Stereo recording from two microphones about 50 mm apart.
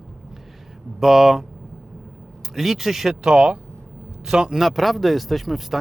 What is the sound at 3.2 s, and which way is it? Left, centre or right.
Speech, centre.